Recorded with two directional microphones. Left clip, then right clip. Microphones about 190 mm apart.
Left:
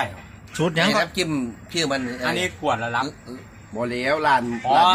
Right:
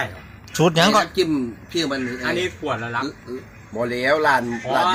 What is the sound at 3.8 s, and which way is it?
Speech, 20° right (ahead or behind).